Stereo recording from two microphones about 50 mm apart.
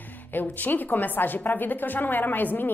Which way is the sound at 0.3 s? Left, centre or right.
Left.